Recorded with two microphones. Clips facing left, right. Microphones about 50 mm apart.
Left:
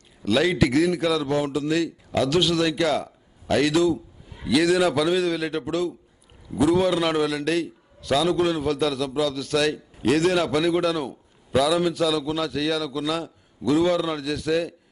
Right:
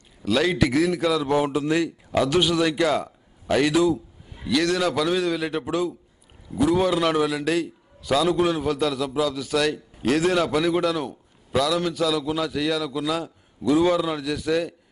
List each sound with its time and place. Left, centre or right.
0.2 s a man's voice: centre
1.2 s a man's voice: centre
4.5 s a man's voice: centre